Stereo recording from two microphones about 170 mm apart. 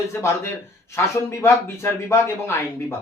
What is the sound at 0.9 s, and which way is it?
Speech, 15° left (ahead or behind).